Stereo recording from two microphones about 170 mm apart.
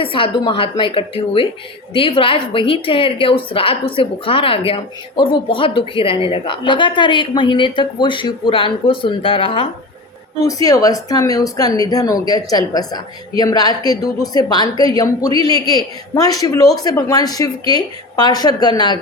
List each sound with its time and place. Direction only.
0.0 s a woman's voice: 30° left (ahead or behind)
10.4 s speech: 20° left (ahead or behind)